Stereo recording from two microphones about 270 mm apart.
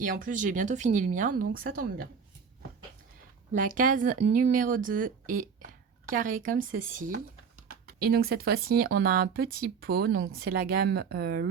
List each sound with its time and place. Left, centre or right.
0.0 s speech: right
3.5 s speech: right